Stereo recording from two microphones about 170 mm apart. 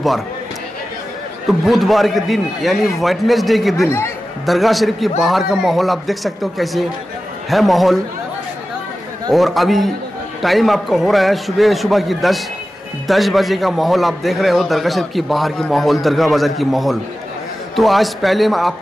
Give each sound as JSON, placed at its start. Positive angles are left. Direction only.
{"t": 1.7, "sound": "a man's voice", "side_deg": 0}
{"t": 9.3, "sound": "a man's voice", "side_deg": 0}